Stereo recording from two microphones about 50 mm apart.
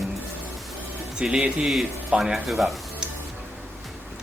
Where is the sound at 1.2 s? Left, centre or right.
Centre.